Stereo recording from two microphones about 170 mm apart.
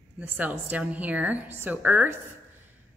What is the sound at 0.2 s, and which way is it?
Speech, 10° right (ahead or behind).